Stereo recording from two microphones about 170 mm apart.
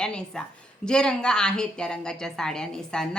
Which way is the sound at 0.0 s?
5° left (ahead or behind).